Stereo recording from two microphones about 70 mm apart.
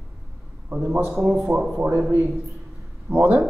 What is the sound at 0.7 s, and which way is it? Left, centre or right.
Speech, right.